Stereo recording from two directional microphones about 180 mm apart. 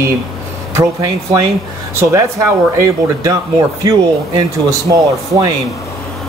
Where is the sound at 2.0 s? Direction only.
15° right (ahead or behind).